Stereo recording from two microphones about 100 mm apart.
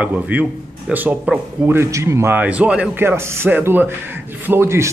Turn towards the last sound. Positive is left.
turn(degrees=-25)  # may be behind; listen again after turning